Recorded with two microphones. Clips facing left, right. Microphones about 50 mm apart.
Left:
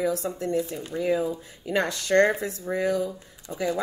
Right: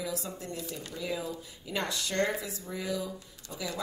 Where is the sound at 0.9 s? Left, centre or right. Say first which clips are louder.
Left 11 dB; left.